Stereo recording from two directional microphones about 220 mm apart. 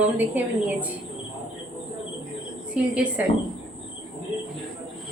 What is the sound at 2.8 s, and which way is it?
Speech, 5° right (ahead or behind).